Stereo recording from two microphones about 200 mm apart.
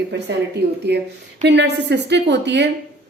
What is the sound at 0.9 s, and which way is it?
A woman's voice, 55° right (ahead or behind).